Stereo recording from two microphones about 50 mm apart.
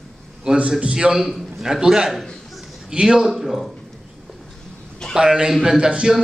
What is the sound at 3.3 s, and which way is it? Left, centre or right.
Speech, centre.